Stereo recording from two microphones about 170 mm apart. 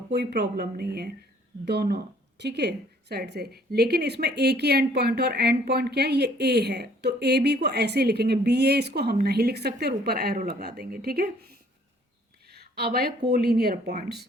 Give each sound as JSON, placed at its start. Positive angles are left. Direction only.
{"t": 0.1, "sound": "speech", "side_deg": -80}
{"t": 12.5, "sound": "speech", "side_deg": -70}